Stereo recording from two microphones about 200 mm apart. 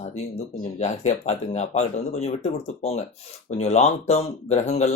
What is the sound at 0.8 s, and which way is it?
Speech, 35° left (ahead or behind).